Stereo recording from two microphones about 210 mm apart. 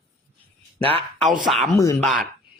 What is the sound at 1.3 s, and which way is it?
Speech, centre (ahead or behind).